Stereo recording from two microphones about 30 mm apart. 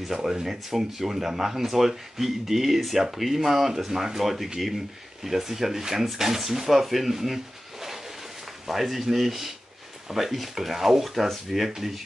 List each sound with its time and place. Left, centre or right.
0.1 s speech: centre
8.6 s speech: centre